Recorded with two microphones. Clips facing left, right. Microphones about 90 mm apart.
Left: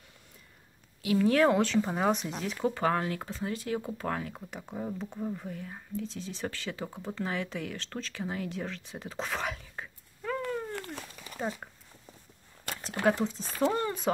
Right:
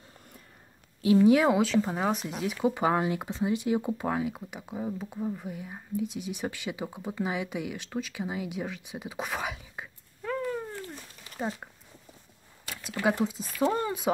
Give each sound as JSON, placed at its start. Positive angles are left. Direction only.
{"t": 1.0, "sound": "speech", "side_deg": -15}
{"t": 10.7, "sound": "a sound", "side_deg": 65}
{"t": 11.3, "sound": "speech", "side_deg": -5}
{"t": 13.0, "sound": "speech", "side_deg": -10}